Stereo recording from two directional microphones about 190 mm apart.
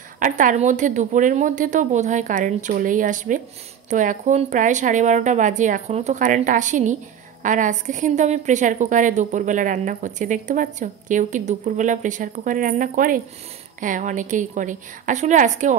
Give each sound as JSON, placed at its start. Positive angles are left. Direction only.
{"t": 0.2, "sound": "a woman's voice", "side_deg": -45}